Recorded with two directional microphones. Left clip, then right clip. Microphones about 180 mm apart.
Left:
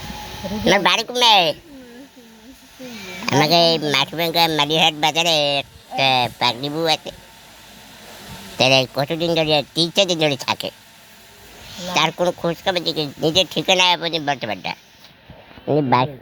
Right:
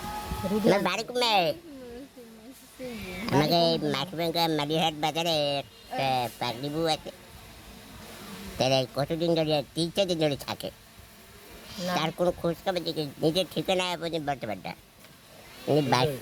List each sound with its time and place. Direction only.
0.7 s speech: centre (ahead or behind)
3.3 s speech: 5° left (ahead or behind)
8.5 s a man's voice: 10° left (ahead or behind)
11.9 s speech: 5° left (ahead or behind)